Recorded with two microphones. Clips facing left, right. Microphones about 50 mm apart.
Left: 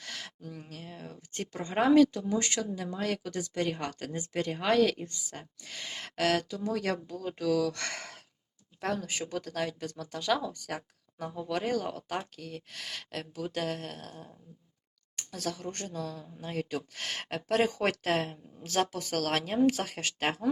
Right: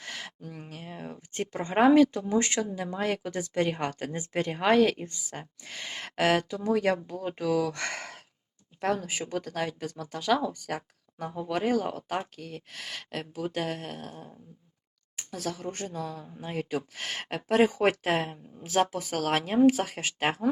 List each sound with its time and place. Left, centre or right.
0.0 s speech: right; by 11.3 s centre
11.3 s speech: centre
16.0 s speech: right